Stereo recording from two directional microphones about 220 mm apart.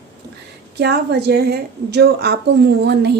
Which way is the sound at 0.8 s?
50° right (ahead or behind).